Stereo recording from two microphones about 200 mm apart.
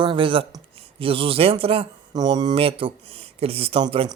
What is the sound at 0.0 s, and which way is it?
Speech, 25° right (ahead or behind).